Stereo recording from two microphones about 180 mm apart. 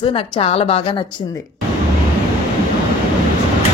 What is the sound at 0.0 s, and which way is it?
A woman's voice, 30° left (ahead or behind).